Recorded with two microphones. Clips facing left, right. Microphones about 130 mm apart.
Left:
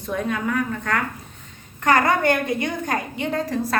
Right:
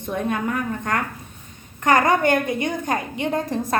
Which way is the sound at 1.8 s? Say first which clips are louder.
Right 1 dB; 20° right (ahead or behind).